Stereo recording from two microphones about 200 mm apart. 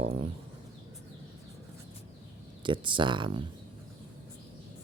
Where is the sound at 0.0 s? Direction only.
30° right (ahead or behind).